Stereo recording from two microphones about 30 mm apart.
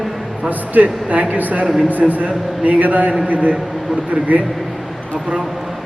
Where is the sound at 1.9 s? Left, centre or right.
Right.